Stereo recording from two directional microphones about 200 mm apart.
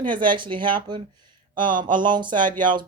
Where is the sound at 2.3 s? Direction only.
40° right (ahead or behind).